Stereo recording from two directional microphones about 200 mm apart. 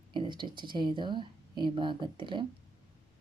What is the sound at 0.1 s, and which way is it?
Speech, 25° right (ahead or behind).